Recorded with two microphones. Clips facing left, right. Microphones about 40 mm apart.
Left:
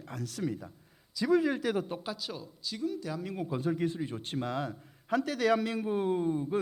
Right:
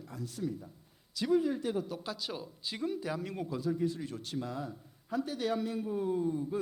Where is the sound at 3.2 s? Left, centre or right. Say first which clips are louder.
Left 2 dB; centre.